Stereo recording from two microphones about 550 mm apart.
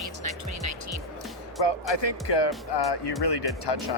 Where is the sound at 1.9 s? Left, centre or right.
Left.